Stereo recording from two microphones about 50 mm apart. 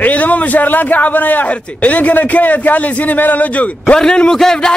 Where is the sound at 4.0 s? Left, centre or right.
Centre.